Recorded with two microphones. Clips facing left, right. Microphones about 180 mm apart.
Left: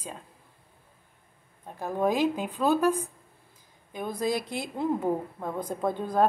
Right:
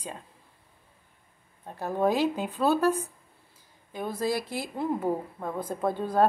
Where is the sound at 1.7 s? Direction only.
15° left (ahead or behind).